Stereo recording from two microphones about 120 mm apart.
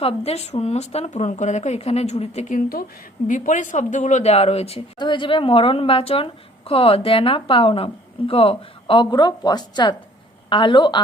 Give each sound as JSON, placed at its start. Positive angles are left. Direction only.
{"t": 0.0, "sound": "a woman's voice", "side_deg": 55}
{"t": 3.2, "sound": "speech", "side_deg": 90}
{"t": 4.9, "sound": "a woman's voice", "side_deg": 40}